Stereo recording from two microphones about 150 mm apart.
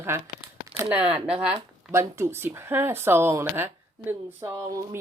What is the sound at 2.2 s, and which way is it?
Speech, 15° right (ahead or behind).